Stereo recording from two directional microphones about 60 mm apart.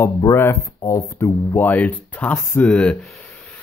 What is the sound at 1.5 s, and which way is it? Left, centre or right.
Speech, left.